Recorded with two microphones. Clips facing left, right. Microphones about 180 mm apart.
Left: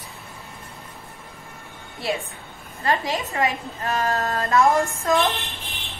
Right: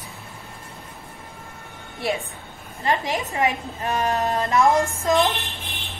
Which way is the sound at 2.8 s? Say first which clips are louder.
Even; 20° right (ahead or behind).